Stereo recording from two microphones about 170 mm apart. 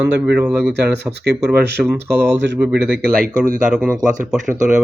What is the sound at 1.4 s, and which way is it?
Speech, 75° right (ahead or behind).